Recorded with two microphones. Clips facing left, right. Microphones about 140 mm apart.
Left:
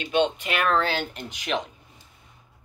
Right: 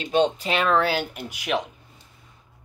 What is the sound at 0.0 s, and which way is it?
Speech, 35° right (ahead or behind).